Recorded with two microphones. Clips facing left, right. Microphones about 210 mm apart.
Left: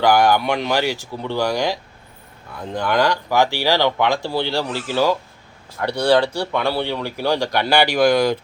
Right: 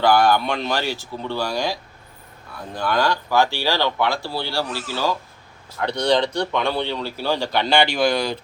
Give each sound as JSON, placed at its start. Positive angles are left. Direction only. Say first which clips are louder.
{"t": 0.0, "sound": "speech", "louder": "left 1 dB", "side_deg": 15}